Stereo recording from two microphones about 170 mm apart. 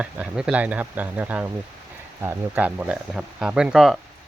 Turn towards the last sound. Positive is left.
turn(degrees=0)  # may be behind; listen again after turning